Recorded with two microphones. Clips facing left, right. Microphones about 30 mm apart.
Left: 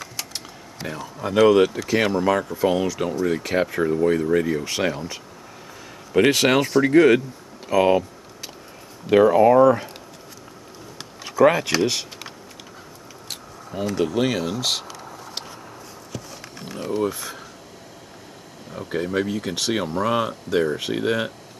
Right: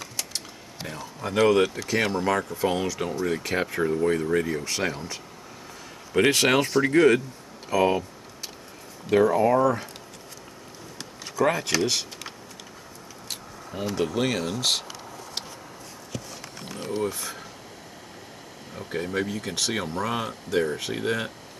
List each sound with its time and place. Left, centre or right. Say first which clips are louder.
0.0 s typing: left 1 dB; centre
0.8 s speech: left 5 dB; centre
7.2 s a sound: left 4 dB; centre
9.1 s speech: left 6 dB; left
11.0 s a sound: left 6 dB; centre
11.5 s speech: left 4 dB; centre
13.3 s a sound: left 2 dB; centre
13.9 s speech: left 4 dB; centre
16.1 s horse: left 1 dB; centre
17.0 s speech: left 4 dB; centre
18.7 s speech: left 5 dB; centre